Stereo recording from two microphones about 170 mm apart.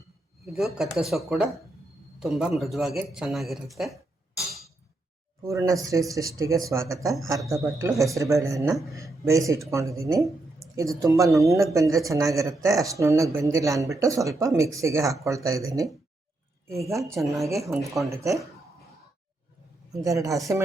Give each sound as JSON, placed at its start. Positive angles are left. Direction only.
{"t": 0.4, "sound": "speech", "side_deg": 0}
{"t": 5.4, "sound": "speech", "side_deg": -20}
{"t": 20.0, "sound": "speech", "side_deg": -20}